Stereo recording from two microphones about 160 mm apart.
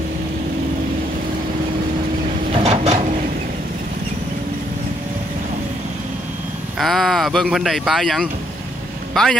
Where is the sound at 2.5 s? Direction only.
40° right (ahead or behind).